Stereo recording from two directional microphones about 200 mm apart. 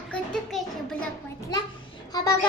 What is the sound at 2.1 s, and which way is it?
Speech, 20° left (ahead or behind).